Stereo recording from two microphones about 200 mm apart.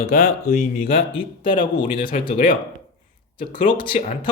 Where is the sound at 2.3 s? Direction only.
40° left (ahead or behind).